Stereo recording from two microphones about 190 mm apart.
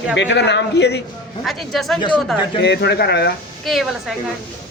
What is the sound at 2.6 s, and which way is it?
Speech, 60° left (ahead or behind).